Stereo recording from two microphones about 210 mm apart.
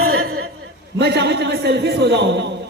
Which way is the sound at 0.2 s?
50° right (ahead or behind).